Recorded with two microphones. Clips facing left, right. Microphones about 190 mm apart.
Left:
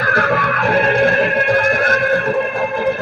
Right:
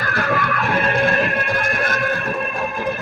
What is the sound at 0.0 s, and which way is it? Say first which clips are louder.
Music: left 4 dB; 60° left (ahead or behind).